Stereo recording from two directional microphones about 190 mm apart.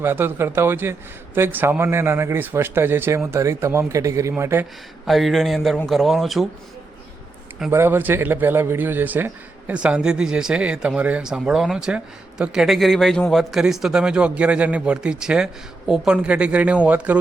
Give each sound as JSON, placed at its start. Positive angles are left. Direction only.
{"t": 0.0, "sound": "speech", "side_deg": -10}
{"t": 5.0, "sound": "a man's voice", "side_deg": 0}
{"t": 7.7, "sound": "a man's voice", "side_deg": -10}